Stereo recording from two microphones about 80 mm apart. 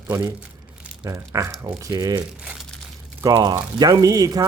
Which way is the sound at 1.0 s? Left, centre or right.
Right.